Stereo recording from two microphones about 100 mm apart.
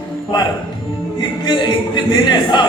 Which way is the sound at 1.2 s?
50° left (ahead or behind).